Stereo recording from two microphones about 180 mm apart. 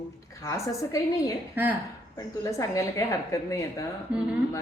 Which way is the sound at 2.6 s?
20° left (ahead or behind).